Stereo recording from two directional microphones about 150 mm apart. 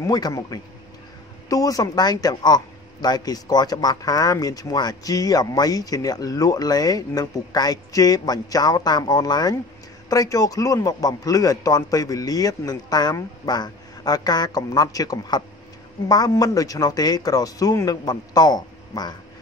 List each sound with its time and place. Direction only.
0.0 s speech: 25° left (ahead or behind)